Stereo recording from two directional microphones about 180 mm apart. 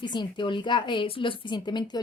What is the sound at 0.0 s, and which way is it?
A woman's voice, 25° left (ahead or behind).